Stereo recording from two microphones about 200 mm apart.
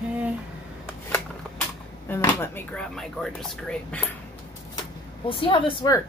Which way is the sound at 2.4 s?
10° left (ahead or behind).